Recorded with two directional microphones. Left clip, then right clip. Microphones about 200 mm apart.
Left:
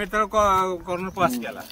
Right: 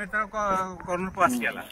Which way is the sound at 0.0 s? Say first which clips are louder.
Left 7 dB; 45° left (ahead or behind).